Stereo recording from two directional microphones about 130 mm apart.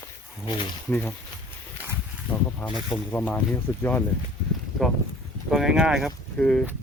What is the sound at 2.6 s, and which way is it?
Speech, 40° left (ahead or behind).